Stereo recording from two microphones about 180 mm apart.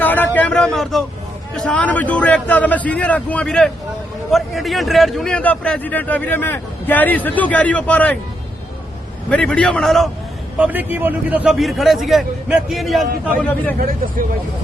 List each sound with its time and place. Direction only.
0.0 s speech: 10° left (ahead or behind)
9.3 s a man's voice: 5° left (ahead or behind)
10.6 s a man's voice: 10° right (ahead or behind); by 13.7 s 10° left (ahead or behind)
13.7 s speech: 55° right (ahead or behind)